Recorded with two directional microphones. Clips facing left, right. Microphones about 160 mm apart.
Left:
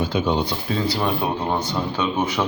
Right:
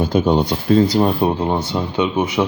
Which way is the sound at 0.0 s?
45° right (ahead or behind).